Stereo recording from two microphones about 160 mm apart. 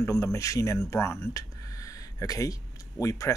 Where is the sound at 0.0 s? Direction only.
20° left (ahead or behind).